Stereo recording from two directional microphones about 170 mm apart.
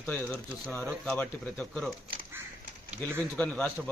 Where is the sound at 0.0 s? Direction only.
5° left (ahead or behind).